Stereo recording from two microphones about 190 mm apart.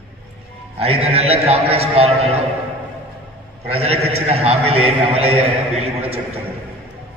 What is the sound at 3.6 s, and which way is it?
A man's voice, 35° right (ahead or behind).